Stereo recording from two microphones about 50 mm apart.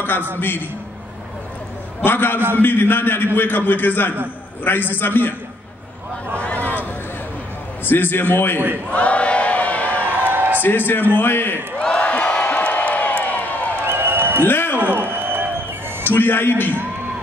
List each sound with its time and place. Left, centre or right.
0.0 s a man's voice: left
2.0 s a man's voice: left
6.4 s a sound: left
7.8 s a man's voice: left
8.9 s crowd: left
10.0 s a sound: right
10.6 s a man's voice: left
12.0 s crowd: left
13.8 s music: right
14.4 s music: left
14.8 s a sound: right
16.0 s a man's voice: left